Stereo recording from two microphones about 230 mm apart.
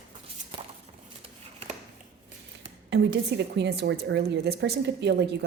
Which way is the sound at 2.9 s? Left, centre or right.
Right.